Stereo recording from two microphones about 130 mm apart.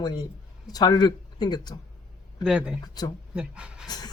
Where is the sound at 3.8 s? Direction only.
30° left (ahead or behind).